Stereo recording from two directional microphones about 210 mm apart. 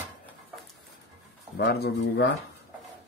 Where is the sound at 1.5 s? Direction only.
55° left (ahead or behind).